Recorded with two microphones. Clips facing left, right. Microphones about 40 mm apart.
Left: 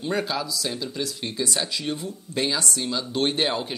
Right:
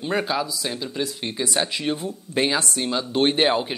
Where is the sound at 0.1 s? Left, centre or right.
Centre.